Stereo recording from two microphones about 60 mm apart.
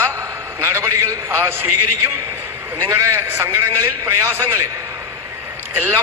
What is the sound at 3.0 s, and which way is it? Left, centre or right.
A man's voice, right.